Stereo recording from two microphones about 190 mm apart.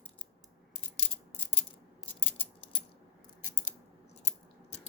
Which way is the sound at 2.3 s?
30° left (ahead or behind).